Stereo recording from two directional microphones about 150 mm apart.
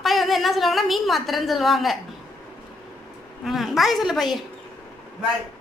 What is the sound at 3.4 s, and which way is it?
A woman's voice, centre (ahead or behind).